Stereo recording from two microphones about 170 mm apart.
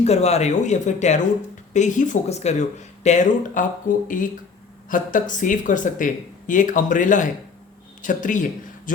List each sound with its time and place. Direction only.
0.0 s speech: 40° left (ahead or behind)